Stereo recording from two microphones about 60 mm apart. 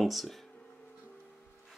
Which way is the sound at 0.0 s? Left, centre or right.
Centre.